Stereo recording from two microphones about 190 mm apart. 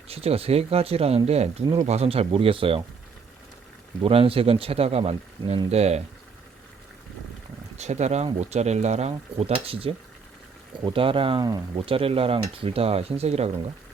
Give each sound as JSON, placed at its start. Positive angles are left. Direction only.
{"t": 0.1, "sound": "speech", "side_deg": -30}
{"t": 4.0, "sound": "speech", "side_deg": -30}
{"t": 7.8, "sound": "speech", "side_deg": -35}